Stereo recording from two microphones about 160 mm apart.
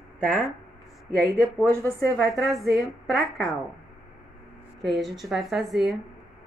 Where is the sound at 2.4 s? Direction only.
Centre (ahead or behind).